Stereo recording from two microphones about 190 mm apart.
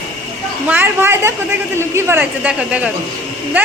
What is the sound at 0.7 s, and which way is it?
A man's voice, 10° right (ahead or behind).